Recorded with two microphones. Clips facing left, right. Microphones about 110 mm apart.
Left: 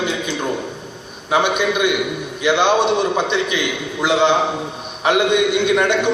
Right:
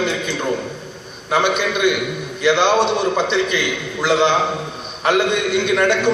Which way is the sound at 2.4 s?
15° left (ahead or behind).